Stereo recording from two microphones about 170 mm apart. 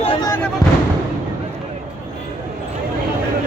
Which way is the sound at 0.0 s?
25° left (ahead or behind).